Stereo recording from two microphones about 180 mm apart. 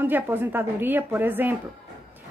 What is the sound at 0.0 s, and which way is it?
A woman's voice, 10° right (ahead or behind).